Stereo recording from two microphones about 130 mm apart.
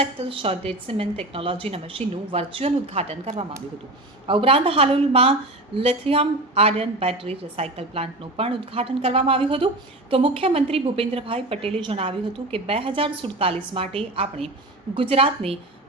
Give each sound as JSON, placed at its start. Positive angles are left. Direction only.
{"t": 0.0, "sound": "a woman's voice", "side_deg": -45}